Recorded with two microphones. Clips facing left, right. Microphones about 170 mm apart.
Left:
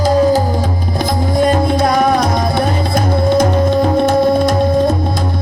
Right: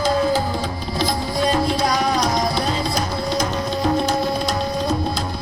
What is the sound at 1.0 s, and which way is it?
Music, 50° left (ahead or behind).